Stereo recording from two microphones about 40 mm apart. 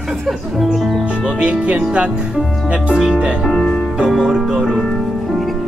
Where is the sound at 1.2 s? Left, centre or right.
Centre.